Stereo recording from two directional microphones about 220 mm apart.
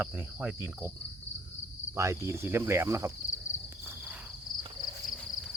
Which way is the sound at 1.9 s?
15° right (ahead or behind).